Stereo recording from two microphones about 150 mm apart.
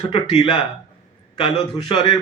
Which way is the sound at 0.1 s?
40° left (ahead or behind).